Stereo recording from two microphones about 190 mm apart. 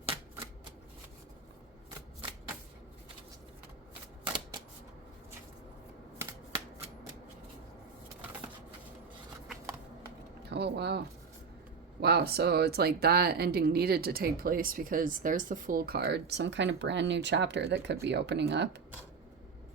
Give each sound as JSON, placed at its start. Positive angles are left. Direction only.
{"t": 4.2, "sound": "shuffling cards", "side_deg": -20}
{"t": 6.1, "sound": "shuffling cards", "side_deg": -15}
{"t": 10.5, "sound": "a sound", "side_deg": -60}
{"t": 11.9, "sound": "speech", "side_deg": -55}